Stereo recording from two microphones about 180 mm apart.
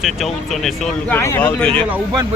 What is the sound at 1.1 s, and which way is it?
Speech, 15° left (ahead or behind).